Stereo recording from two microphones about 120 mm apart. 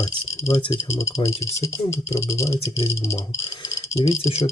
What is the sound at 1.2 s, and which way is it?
Speech, 25° left (ahead or behind).